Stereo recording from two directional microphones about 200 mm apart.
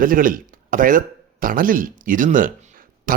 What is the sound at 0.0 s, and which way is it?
Speech, 45° right (ahead or behind).